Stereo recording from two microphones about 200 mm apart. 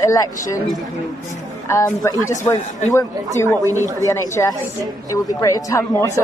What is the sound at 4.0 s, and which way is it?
Speech, 15° left (ahead or behind).